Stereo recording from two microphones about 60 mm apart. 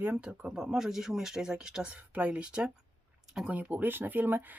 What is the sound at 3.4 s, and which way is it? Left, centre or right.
Speech, right.